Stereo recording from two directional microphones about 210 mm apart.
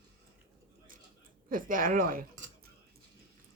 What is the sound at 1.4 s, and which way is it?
Speech, 40° right (ahead or behind).